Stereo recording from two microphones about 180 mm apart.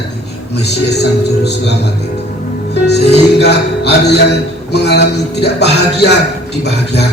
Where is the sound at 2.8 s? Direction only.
70° left (ahead or behind).